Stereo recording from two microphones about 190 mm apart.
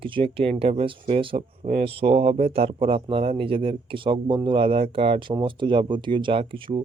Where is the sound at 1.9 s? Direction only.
30° right (ahead or behind).